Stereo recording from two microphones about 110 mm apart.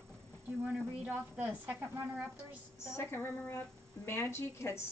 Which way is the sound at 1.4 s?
20° right (ahead or behind).